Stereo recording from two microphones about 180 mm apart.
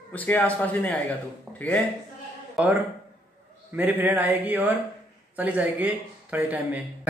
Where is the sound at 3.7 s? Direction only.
10° right (ahead or behind).